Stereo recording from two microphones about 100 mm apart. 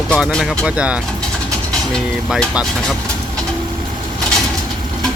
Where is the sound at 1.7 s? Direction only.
5° left (ahead or behind).